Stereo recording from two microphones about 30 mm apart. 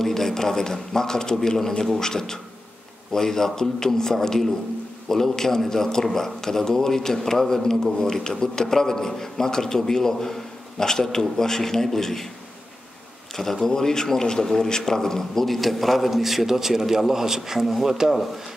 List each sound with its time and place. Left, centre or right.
0.0 s a man's voice: centre
13.4 s a man's voice: centre